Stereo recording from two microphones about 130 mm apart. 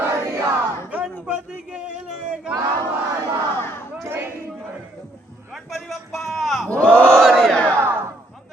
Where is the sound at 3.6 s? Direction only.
20° left (ahead or behind).